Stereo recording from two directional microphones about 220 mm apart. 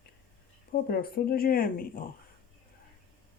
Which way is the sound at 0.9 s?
40° left (ahead or behind).